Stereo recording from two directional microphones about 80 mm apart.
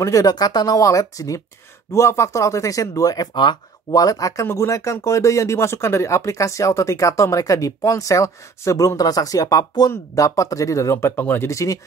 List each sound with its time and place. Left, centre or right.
0.0 s speech: left
11.4 s speech: left